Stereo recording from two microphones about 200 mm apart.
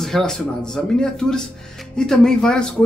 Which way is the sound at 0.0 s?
Centre (ahead or behind).